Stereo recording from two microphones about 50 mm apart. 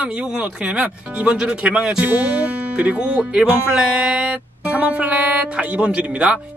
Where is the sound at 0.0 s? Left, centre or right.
Right.